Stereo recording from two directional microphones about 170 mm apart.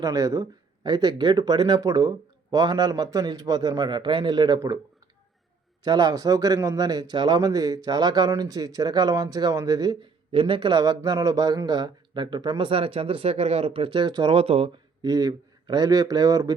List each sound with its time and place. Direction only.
0.0 s speech: 20° right (ahead or behind)
5.8 s speech: 25° right (ahead or behind)
15.0 s speech: 20° right (ahead or behind)